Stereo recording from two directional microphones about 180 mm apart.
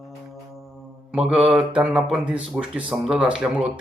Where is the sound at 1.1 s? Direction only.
5° right (ahead or behind).